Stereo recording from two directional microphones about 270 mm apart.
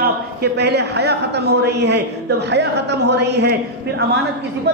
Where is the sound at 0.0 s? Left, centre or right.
Right.